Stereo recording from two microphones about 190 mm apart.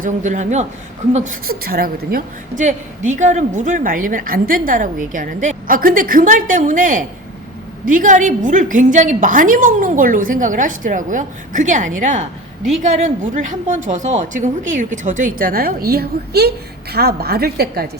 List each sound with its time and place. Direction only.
0.0 s a man's voice: 40° right (ahead or behind)